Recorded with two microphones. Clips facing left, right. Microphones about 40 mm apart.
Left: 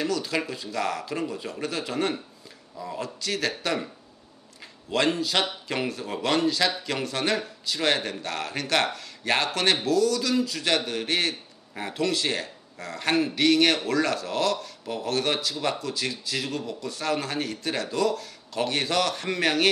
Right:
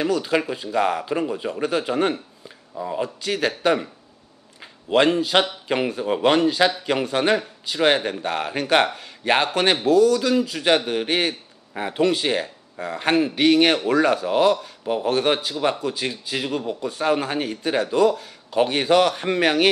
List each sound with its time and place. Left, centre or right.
0.0 s a man's voice: centre
2.7 s speech: right
3.0 s speech: centre
4.9 s a man's voice: centre